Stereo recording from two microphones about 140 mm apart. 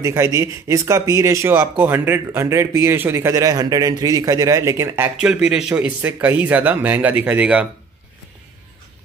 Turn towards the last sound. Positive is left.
turn(degrees=-10)  # may be behind; listen again after turning